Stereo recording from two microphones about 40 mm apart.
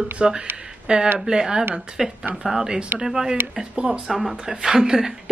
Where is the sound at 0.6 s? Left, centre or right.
Centre.